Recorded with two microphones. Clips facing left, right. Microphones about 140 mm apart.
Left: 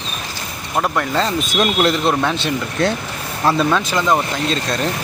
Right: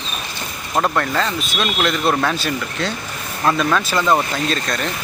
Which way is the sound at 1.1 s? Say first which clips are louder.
Left 3 dB; 35° left (ahead or behind).